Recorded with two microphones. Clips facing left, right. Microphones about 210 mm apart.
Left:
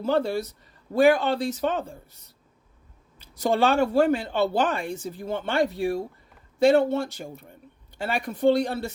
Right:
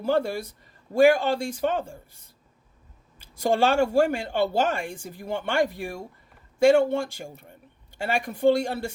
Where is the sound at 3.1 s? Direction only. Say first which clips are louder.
Even; 50° right (ahead or behind).